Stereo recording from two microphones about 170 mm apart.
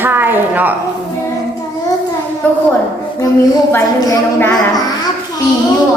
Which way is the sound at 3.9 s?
20° left (ahead or behind).